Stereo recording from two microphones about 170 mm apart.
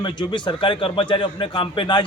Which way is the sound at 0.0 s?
25° left (ahead or behind).